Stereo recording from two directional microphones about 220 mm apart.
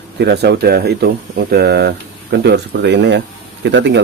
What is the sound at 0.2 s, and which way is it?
Speech, 45° right (ahead or behind).